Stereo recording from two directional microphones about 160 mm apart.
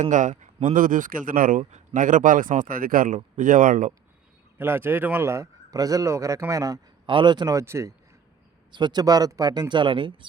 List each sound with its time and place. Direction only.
0.0 s speech: 50° right (ahead or behind)
4.5 s speech: 15° right (ahead or behind)
8.7 s speech: 25° right (ahead or behind)